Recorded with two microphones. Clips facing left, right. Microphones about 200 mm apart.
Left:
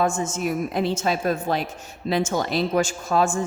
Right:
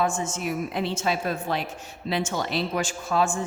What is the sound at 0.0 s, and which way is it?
A woman's voice, 40° left (ahead or behind).